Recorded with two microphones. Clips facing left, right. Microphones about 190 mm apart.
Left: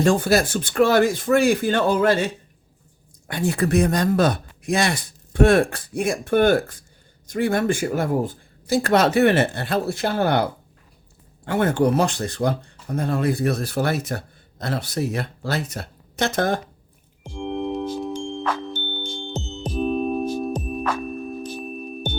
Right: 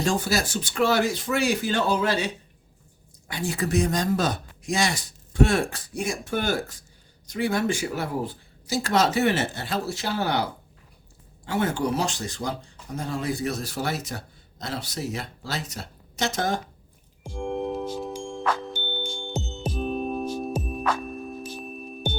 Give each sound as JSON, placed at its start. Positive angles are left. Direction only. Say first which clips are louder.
{"t": 0.0, "sound": "a man's voice", "louder": "left 7 dB", "side_deg": 55}
{"t": 17.2, "sound": "music", "louder": "left 2 dB", "side_deg": 0}
{"t": 19.3, "sound": "music", "louder": "even", "side_deg": -10}
{"t": 20.5, "sound": "music", "louder": "left 2 dB", "side_deg": 0}
{"t": 22.0, "sound": "music", "louder": "left 1 dB", "side_deg": -10}